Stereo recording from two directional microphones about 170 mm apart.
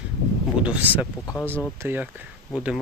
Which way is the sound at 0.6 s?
10° right (ahead or behind).